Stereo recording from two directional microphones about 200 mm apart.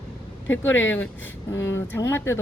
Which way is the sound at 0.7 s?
70° left (ahead or behind).